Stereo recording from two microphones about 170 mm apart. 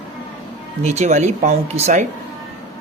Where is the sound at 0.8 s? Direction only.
40° right (ahead or behind).